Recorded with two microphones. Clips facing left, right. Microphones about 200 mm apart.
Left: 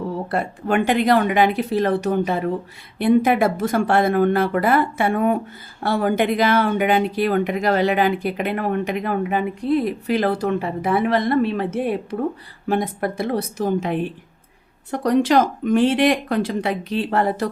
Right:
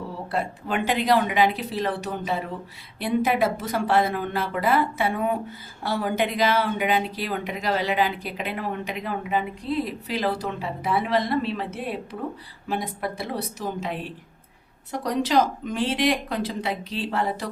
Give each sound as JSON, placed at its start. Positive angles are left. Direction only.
{"t": 0.3, "sound": "speech", "side_deg": 55}